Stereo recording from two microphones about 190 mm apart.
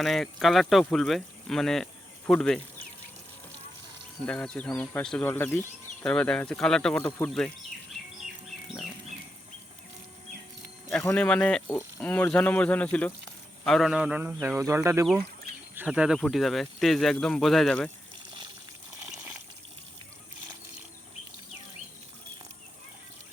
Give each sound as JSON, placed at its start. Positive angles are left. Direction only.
{"t": 0.0, "sound": "speech", "side_deg": 0}
{"t": 4.3, "sound": "speech", "side_deg": 5}
{"t": 11.0, "sound": "speech", "side_deg": 5}